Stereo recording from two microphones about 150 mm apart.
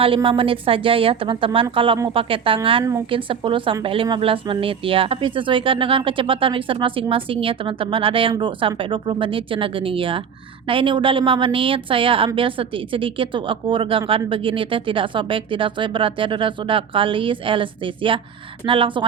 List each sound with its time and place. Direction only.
0.0 s a woman's voice: 35° right (ahead or behind)